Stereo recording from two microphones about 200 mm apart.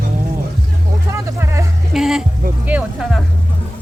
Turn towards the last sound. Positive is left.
turn(degrees=-5)  # may be behind; listen again after turning